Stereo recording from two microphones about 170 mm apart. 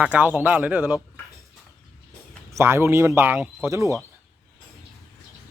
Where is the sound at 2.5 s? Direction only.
15° right (ahead or behind).